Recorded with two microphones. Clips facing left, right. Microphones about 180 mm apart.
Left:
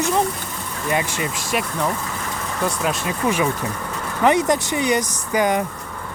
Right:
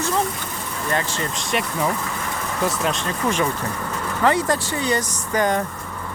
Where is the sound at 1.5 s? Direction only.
Centre (ahead or behind).